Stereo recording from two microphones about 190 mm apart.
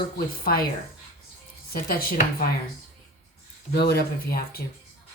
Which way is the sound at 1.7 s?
50° left (ahead or behind).